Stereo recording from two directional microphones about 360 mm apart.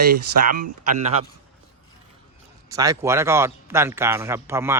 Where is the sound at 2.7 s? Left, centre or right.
Centre.